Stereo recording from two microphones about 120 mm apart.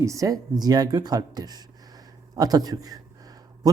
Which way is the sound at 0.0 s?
25° right (ahead or behind).